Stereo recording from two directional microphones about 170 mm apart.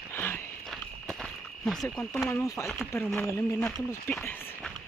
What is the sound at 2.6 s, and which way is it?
Speech, centre (ahead or behind).